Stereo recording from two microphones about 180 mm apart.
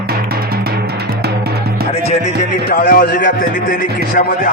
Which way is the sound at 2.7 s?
55° left (ahead or behind).